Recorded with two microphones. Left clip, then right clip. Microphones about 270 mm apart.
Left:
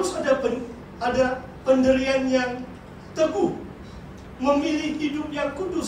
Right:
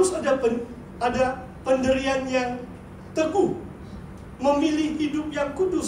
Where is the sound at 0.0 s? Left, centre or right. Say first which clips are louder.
Right 1 dB; right.